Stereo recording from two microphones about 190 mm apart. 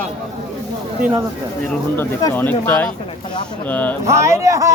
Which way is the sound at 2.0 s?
10° left (ahead or behind).